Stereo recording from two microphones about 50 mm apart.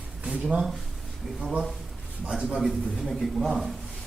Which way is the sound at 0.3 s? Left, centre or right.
Right.